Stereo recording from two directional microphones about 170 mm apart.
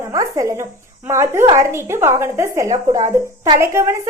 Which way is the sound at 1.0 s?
15° right (ahead or behind).